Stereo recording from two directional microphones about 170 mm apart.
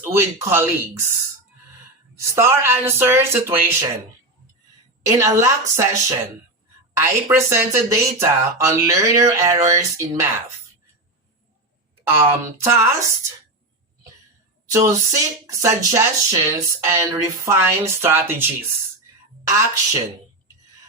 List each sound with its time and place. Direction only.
0.0 s speech: 15° right (ahead or behind)
2.1 s speech: 15° right (ahead or behind)
5.0 s a woman's voice: 20° right (ahead or behind)
12.5 s speech: 15° right (ahead or behind)
14.7 s speech: 20° right (ahead or behind)